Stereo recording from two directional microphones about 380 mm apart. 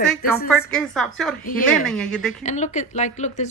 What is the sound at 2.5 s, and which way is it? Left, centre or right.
A woman's voice, centre.